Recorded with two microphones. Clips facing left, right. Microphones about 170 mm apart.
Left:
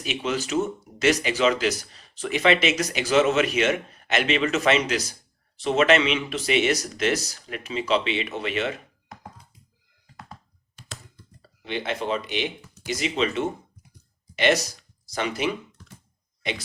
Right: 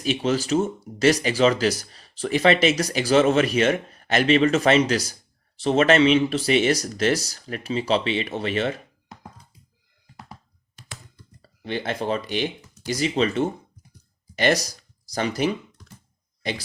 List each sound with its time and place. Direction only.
0.0 s speech: 35° right (ahead or behind)
11.4 s speech: 40° right (ahead or behind)